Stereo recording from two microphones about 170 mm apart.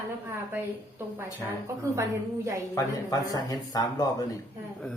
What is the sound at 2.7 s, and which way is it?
Speech, 20° left (ahead or behind).